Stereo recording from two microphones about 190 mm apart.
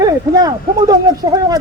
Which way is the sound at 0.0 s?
20° right (ahead or behind).